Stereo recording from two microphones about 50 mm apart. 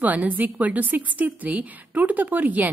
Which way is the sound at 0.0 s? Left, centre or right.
Right.